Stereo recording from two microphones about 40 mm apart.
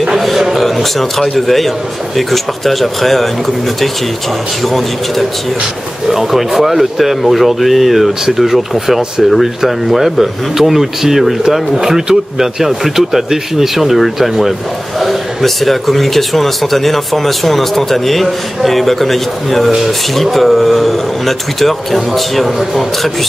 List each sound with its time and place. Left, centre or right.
0.4 s a man's voice: centre